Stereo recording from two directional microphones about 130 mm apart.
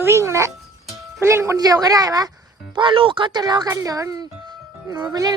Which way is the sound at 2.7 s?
40° right (ahead or behind).